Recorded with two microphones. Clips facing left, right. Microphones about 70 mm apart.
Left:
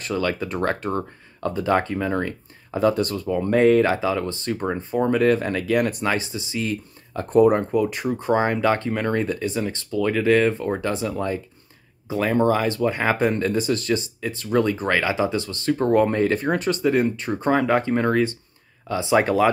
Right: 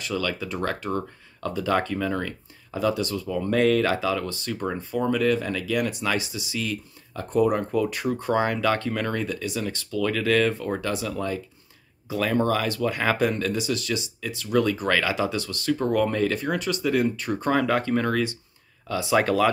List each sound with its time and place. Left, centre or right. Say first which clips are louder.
0.0 s speech: left 4 dB; left
7.2 s speech: left 6 dB; left
7.7 s speech: left 3 dB; left